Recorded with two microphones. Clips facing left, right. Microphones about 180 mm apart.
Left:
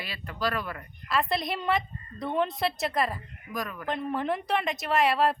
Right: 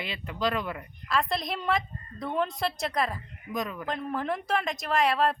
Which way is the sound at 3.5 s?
20° right (ahead or behind).